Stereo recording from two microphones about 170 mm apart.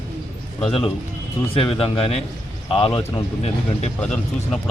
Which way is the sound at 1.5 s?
35° left (ahead or behind).